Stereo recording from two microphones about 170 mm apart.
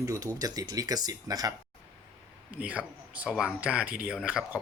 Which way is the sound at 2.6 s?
5° right (ahead or behind).